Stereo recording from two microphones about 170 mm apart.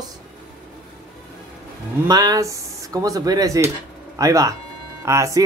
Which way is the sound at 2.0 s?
20° right (ahead or behind).